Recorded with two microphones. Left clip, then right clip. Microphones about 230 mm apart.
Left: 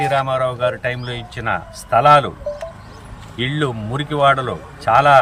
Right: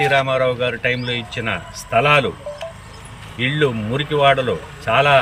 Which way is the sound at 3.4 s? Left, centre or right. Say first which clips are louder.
Right 3 dB; centre.